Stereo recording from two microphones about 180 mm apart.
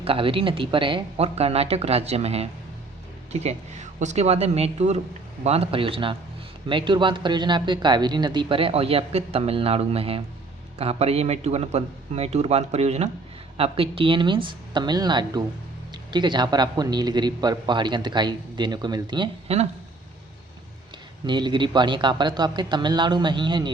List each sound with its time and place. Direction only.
0.0 s speech: 30° right (ahead or behind)
21.2 s speech: 25° right (ahead or behind)